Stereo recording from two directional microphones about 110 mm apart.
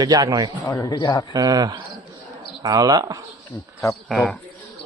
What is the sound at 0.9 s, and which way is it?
Speech, 40° left (ahead or behind).